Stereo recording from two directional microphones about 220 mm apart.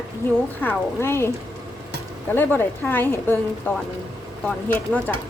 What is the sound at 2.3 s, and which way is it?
Speech, 10° left (ahead or behind).